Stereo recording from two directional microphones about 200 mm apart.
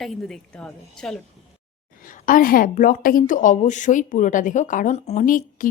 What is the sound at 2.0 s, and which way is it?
A woman's voice, 40° left (ahead or behind).